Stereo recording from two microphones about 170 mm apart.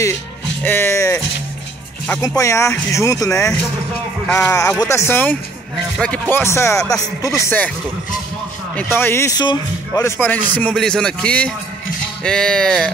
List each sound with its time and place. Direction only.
0.0 s speech: 15° left (ahead or behind)
2.2 s speech: 20° left (ahead or behind)
8.7 s speech: 10° left (ahead or behind)
12.2 s music: 5° left (ahead or behind)